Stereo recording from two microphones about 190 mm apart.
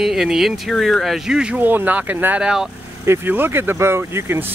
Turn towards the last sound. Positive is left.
turn(degrees=-10)  # may be behind; listen again after turning